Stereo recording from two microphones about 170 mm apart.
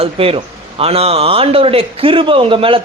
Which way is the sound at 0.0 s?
35° right (ahead or behind).